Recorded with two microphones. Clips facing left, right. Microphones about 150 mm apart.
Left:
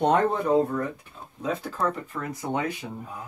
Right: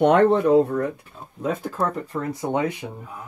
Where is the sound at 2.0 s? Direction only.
30° right (ahead or behind).